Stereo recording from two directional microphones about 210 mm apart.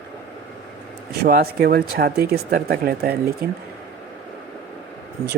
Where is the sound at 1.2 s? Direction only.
45° right (ahead or behind).